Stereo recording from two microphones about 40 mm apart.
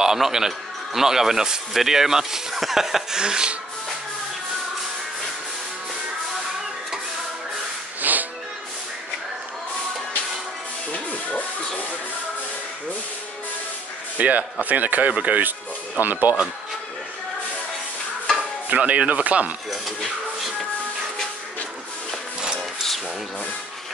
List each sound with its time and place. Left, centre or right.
0.0 s a man's voice: centre
3.2 s speech: right
8.0 s music: right
10.9 s a sound: left
14.1 s speech: right
18.7 s speech: right